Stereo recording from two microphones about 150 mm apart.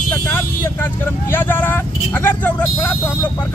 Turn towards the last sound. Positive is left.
turn(degrees=15)  # may be behind; listen again after turning